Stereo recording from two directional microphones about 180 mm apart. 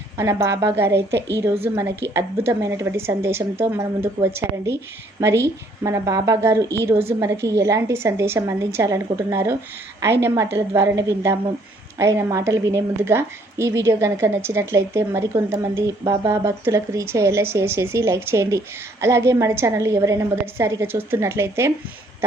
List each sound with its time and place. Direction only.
0.2 s a woman's voice: 15° right (ahead or behind)
0.9 s a woman's voice: 70° right (ahead or behind)
1.6 s a woman's voice: 15° right (ahead or behind)
5.8 s a woman's voice: 15° right (ahead or behind)